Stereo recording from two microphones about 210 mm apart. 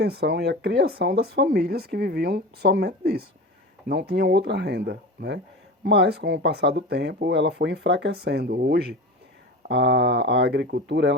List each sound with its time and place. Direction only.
0.0 s speech: 50° right (ahead or behind)